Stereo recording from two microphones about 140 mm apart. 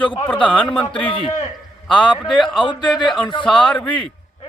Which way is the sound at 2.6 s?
35° left (ahead or behind).